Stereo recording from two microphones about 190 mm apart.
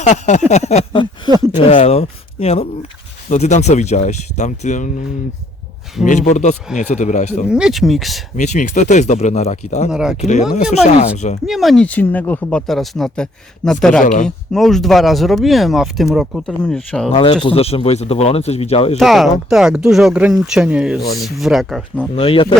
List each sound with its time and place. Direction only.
0.0 s speech: 40° left (ahead or behind)
6.1 s speech: 40° left (ahead or behind)
7.4 s speech: 5° right (ahead or behind)
8.4 s speech: 40° left (ahead or behind)
9.9 s speech: 5° right (ahead or behind)
10.2 s speech: 40° left (ahead or behind)
11.4 s speech: centre (ahead or behind)
14.0 s speech: 40° left (ahead or behind)
14.3 s speech: centre (ahead or behind)
17.1 s speech: 30° left (ahead or behind)
18.9 s speech: centre (ahead or behind)
22.1 s speech: 30° left (ahead or behind)